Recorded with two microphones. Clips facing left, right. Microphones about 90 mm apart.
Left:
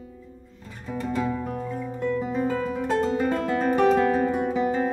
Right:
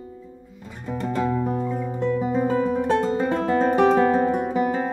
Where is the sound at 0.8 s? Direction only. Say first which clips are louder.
Right 2 dB; 5° right (ahead or behind).